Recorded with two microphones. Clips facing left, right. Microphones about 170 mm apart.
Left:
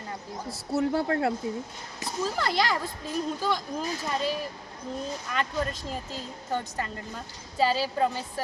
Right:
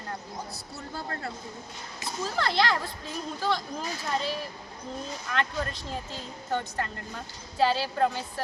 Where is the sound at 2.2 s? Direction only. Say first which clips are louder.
Right 1 dB; 10° left (ahead or behind).